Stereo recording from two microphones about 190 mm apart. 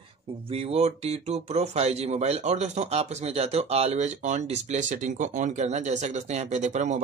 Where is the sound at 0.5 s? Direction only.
30° right (ahead or behind).